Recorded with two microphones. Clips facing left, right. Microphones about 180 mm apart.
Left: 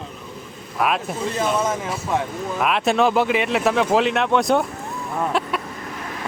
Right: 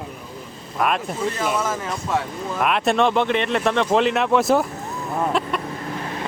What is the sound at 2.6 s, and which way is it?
Speech, centre (ahead or behind).